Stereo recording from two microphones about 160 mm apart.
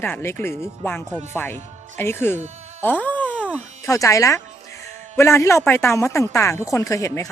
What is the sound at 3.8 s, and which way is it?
Speech, 20° left (ahead or behind).